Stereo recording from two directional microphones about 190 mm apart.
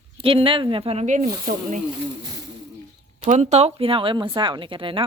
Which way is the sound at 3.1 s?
40° right (ahead or behind).